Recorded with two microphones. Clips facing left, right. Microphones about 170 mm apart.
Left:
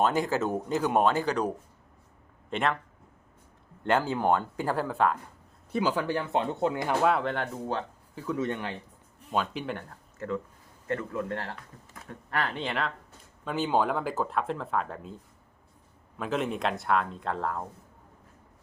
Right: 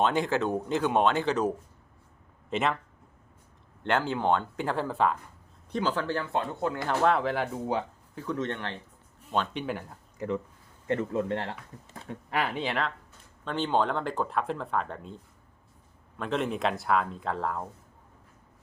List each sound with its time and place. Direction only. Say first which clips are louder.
0.8 s speech: left 1 dB; 15° left (ahead or behind)
1.2 s speech: right 1 dB; centre (ahead or behind)
3.8 s speech: left 1 dB; 10° left (ahead or behind)
7.0 s speech: right 3 dB; centre (ahead or behind)
8.1 s speech: left 1 dB; 5° left (ahead or behind)
10.2 s speech: right 1 dB; 20° right (ahead or behind)
12.3 s speech: right 1 dB; 10° right (ahead or behind)
16.1 s speech: even; 5° left (ahead or behind)